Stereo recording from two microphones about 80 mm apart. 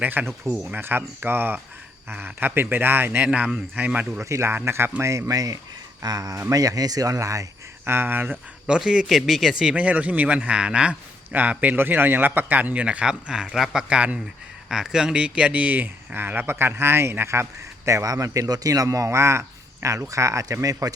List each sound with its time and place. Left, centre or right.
0.0 s a man's voice: right
0.5 s speech: centre
0.8 s a man's voice: right
3.2 s a man's voice: centre
4.2 s speech: right
7.9 s a man's voice: right
8.6 s speech: centre
9.7 s a man's voice: centre; by 20.9 s right